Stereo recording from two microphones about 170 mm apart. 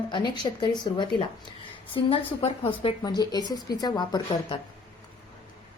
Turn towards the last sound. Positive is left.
turn(degrees=25)  # may be behind; listen again after turning